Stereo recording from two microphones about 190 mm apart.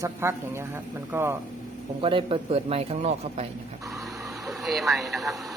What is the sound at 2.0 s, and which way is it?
A man's voice, 25° right (ahead or behind).